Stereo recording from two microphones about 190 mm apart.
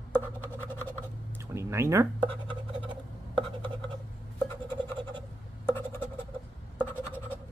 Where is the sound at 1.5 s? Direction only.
15° right (ahead or behind).